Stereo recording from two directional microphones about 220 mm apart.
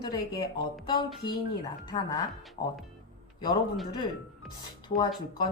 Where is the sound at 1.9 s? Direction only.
15° left (ahead or behind).